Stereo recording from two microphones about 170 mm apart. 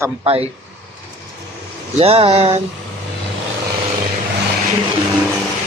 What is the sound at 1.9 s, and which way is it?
Speech, 35° right (ahead or behind).